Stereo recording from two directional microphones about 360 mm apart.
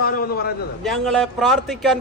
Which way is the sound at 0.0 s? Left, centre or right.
Left.